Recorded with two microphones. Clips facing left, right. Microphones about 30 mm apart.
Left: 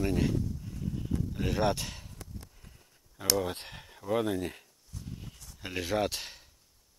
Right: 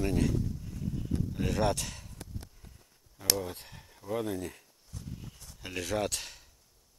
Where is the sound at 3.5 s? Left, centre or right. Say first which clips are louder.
Left 5 dB; left.